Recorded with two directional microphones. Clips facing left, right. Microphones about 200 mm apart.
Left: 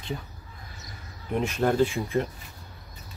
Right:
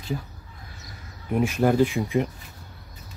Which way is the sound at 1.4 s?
10° right (ahead or behind).